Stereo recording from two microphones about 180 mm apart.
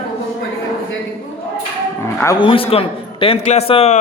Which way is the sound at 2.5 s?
30° left (ahead or behind).